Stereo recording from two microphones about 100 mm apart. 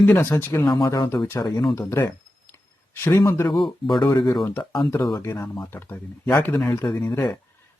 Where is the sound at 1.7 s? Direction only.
30° left (ahead or behind).